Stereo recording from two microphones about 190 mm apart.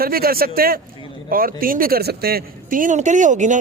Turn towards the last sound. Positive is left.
turn(degrees=-40)  # may be behind; listen again after turning